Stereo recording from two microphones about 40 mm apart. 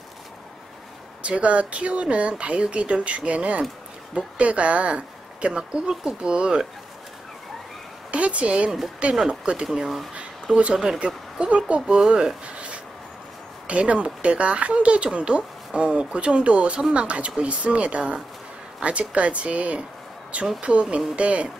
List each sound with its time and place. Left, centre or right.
1.2 s speech: right
8.1 s speech: right
9.7 s speech: centre
11.0 s a woman's voice: right
12.5 s a sound: right
13.7 s speech: right